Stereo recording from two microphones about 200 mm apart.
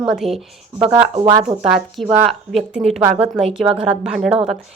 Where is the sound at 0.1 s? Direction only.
Centre (ahead or behind).